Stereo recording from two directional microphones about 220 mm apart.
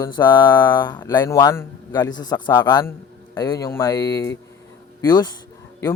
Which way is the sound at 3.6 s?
10° left (ahead or behind).